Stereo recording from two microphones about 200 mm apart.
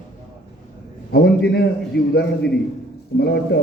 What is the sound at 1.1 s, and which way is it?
Speech, 55° left (ahead or behind).